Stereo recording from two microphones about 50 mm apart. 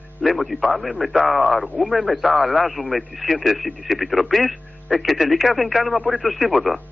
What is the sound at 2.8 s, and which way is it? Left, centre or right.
Speech, right.